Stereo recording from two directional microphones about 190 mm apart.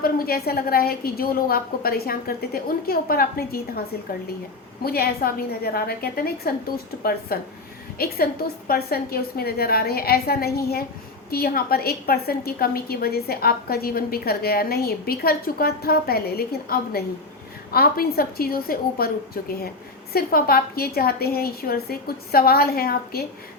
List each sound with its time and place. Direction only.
0.0 s a woman's voice: 55° left (ahead or behind)